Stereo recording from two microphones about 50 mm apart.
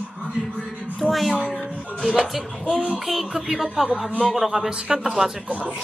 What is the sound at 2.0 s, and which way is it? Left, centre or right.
Speech, centre.